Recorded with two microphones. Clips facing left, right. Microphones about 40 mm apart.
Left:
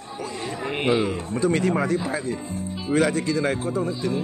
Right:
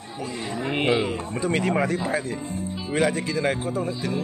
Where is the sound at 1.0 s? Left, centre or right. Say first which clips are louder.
Left 3 dB; right.